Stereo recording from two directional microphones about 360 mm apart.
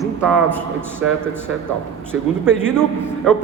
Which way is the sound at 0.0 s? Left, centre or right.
Centre.